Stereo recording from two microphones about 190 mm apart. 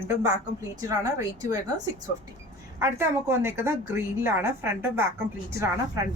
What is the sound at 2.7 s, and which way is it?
A woman's voice, 15° right (ahead or behind).